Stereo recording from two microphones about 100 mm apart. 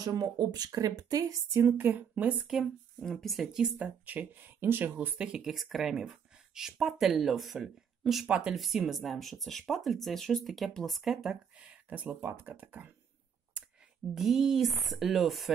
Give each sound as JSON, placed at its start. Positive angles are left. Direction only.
{"t": 0.0, "sound": "speech", "side_deg": -40}
{"t": 1.6, "sound": "speech", "side_deg": -20}
{"t": 2.4, "sound": "speech", "side_deg": 0}
{"t": 4.0, "sound": "speech", "side_deg": -15}
{"t": 14.1, "sound": "speech", "side_deg": -5}